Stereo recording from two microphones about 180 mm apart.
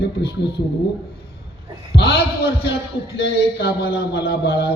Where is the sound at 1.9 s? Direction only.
65° left (ahead or behind).